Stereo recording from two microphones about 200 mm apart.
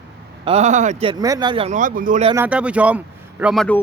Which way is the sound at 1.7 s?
40° right (ahead or behind).